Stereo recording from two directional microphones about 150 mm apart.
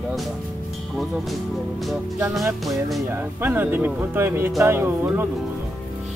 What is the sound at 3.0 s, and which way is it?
Speech, 15° right (ahead or behind).